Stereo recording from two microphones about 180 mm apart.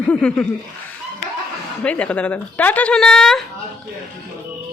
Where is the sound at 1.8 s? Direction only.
5° left (ahead or behind).